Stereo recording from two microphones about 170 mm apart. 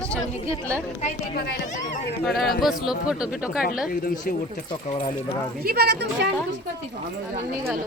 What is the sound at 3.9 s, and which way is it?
Speech, 60° left (ahead or behind).